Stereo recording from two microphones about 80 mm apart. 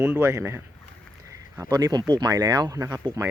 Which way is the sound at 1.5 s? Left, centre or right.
Right.